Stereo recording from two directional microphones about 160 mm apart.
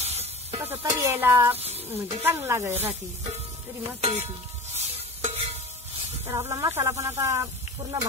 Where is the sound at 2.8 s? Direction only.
40° right (ahead or behind).